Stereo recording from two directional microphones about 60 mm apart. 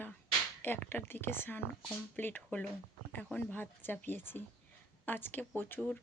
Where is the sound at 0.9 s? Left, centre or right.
Left.